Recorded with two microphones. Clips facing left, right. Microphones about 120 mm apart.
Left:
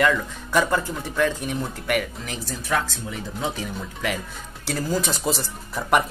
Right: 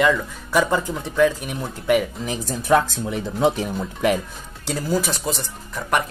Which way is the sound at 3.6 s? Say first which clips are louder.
Right 7 dB; 40° right (ahead or behind).